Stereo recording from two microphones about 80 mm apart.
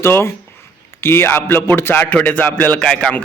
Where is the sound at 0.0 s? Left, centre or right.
Left.